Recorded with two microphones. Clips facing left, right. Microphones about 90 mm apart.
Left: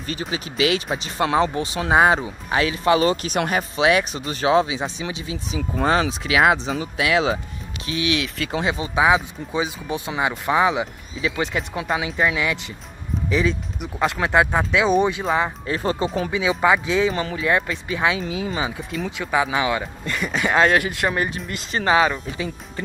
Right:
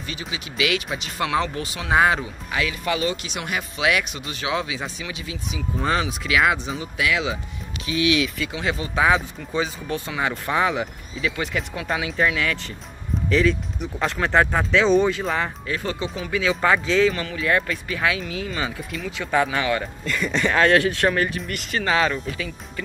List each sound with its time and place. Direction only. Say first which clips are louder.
0.0 s speech: left 5 dB; 40° left (ahead or behind)
8.6 s speech: left 1 dB; 20° left (ahead or behind)
12.4 s speech: left 1 dB; 15° left (ahead or behind)
15.6 s speech: left 4 dB; 30° left (ahead or behind)
16.3 s speech: even; 15° left (ahead or behind)
17.1 s speech: left 2 dB; 30° left (ahead or behind)
19.1 s speech: even; 10° left (ahead or behind)